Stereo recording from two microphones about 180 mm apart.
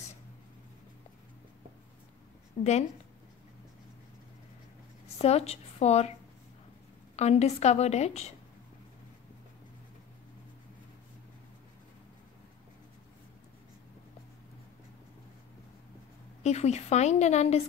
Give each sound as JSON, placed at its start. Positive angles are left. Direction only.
{"t": 2.6, "sound": "a woman's voice", "side_deg": 40}
{"t": 5.0, "sound": "a woman's voice", "side_deg": 35}
{"t": 7.2, "sound": "a woman's voice", "side_deg": 35}
{"t": 16.4, "sound": "a woman's voice", "side_deg": 40}